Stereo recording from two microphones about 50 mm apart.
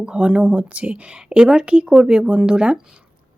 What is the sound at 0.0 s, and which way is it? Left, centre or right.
A woman's voice, centre.